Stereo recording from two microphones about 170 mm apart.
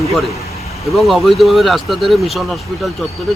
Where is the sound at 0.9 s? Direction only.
Centre (ahead or behind).